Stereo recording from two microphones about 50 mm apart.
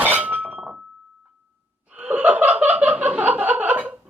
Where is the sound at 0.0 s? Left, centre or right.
Right.